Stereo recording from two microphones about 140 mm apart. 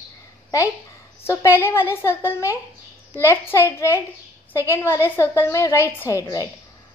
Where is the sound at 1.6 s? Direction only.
20° left (ahead or behind).